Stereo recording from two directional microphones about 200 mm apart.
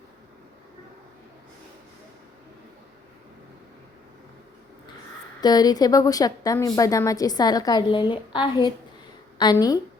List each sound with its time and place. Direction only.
5.4 s a woman's voice: 20° left (ahead or behind)